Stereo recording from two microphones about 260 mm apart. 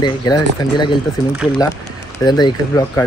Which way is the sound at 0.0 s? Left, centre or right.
Centre.